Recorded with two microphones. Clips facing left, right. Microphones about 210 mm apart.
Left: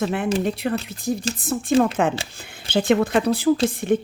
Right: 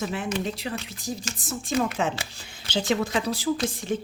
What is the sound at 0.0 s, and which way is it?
A woman's voice, 60° left (ahead or behind).